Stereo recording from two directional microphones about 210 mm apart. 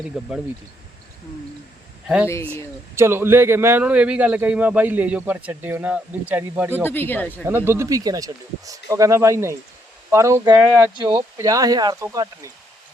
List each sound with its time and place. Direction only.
0.1 s speech: centre (ahead or behind)
2.2 s speech: 10° left (ahead or behind)
2.9 s a man's voice: 10° right (ahead or behind)
6.8 s speech: 10° left (ahead or behind)
7.4 s a man's voice: 10° right (ahead or behind)